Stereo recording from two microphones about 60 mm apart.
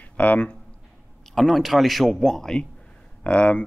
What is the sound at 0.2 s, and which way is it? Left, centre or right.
Speech, left.